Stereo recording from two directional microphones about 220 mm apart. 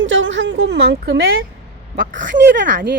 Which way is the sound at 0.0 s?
60° right (ahead or behind).